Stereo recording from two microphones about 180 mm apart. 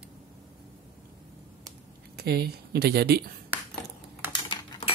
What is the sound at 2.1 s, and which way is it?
Speech, 60° right (ahead or behind).